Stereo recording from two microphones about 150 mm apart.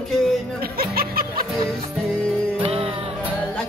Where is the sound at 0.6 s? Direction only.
85° right.